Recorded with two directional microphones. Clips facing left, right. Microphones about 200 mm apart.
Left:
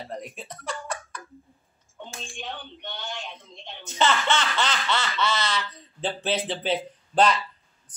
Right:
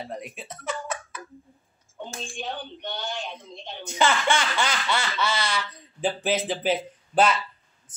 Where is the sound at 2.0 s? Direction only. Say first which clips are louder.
Right 4 dB; 40° right (ahead or behind).